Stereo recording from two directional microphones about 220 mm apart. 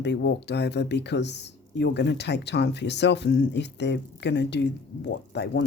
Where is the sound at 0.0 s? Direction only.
50° left (ahead or behind).